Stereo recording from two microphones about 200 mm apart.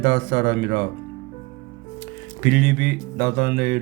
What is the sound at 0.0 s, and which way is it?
Speech, 50° right (ahead or behind).